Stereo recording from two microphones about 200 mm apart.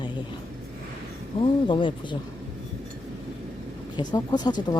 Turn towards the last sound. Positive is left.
turn(degrees=20)  # may be behind; listen again after turning